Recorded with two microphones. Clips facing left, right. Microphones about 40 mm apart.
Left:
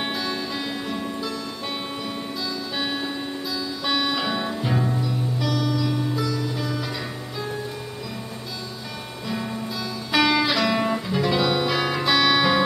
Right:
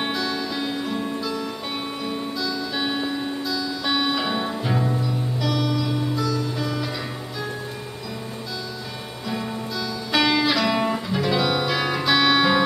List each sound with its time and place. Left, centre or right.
0.0 s music: centre
2.4 s music: centre
9.3 s music: centre